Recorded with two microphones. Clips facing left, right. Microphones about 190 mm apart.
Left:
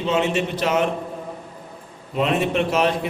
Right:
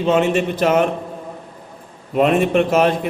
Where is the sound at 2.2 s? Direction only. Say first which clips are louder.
Right 6 dB; 50° right (ahead or behind).